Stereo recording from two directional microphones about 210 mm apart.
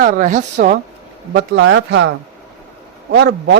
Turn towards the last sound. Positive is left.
turn(degrees=-55)  # may be behind; listen again after turning